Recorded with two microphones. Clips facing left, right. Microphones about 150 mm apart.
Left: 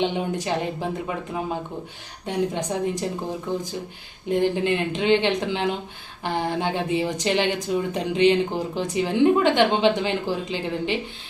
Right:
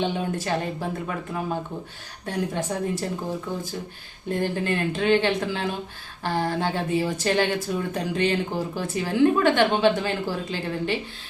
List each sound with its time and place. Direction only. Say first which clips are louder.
0.0 s speech: left 2 dB; 20° left (ahead or behind)